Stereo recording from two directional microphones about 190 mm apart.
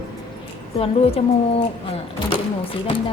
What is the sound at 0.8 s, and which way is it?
Speech, 30° left (ahead or behind).